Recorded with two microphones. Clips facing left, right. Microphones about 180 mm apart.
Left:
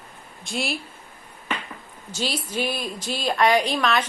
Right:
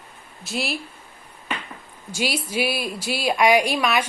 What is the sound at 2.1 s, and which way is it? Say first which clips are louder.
A woman's voice: right 2 dB; 10° right (ahead or behind).